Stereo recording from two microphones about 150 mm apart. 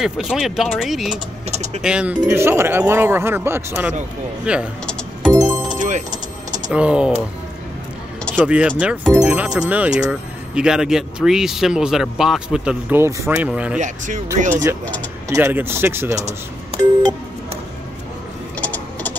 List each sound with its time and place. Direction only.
0.0 s speech: 5° right (ahead or behind)
2.2 s speech: 15° right (ahead or behind)
5.3 s music: 25° right (ahead or behind)
5.8 s vehicle: 55° right (ahead or behind)
6.7 s speech: 5° right (ahead or behind)
8.5 s speech: 10° right (ahead or behind)
13.0 s speech: 15° right (ahead or behind)
13.7 s speech: 55° right (ahead or behind)
14.5 s speech: 15° right (ahead or behind)
16.2 s speech: 50° right (ahead or behind)
18.6 s a sound: 10° left (ahead or behind)